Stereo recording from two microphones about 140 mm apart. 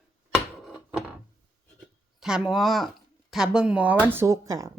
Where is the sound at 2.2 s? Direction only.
5° right (ahead or behind).